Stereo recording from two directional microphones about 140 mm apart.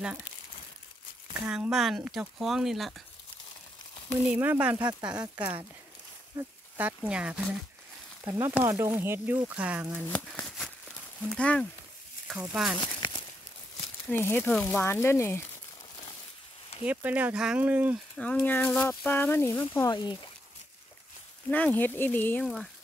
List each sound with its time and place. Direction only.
1.4 s speech: 5° right (ahead or behind)
4.3 s speech: 10° right (ahead or behind)
5.1 s speech: 25° right (ahead or behind)
6.3 s speech: 10° right (ahead or behind)
8.2 s speech: 20° right (ahead or behind)
10.0 s speech: 15° left (ahead or behind)
10.4 s a sound: centre (ahead or behind)
12.3 s speech: centre (ahead or behind)
12.8 s a sound: 35° left (ahead or behind)
14.0 s speech: 15° left (ahead or behind)
16.8 s speech: 10° right (ahead or behind)
18.1 s speech: 10° left (ahead or behind)
19.9 s speech: 30° left (ahead or behind)
21.7 s speech: 15° left (ahead or behind)